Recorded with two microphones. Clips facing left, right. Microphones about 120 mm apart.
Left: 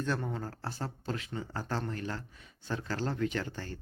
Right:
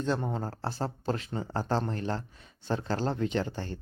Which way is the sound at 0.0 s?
25° right (ahead or behind).